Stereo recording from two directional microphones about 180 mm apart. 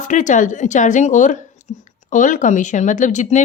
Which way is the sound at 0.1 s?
45° left (ahead or behind).